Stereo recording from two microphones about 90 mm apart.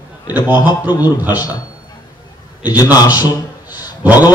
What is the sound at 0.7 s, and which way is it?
Speech, 45° left (ahead or behind).